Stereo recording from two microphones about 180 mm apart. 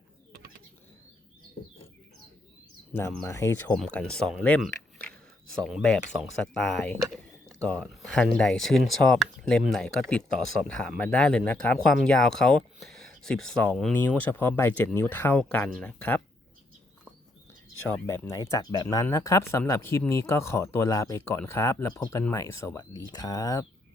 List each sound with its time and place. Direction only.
2.9 s speech: 10° left (ahead or behind)
3.8 s speech: 5° left (ahead or behind)
17.8 s speech: 10° left (ahead or behind)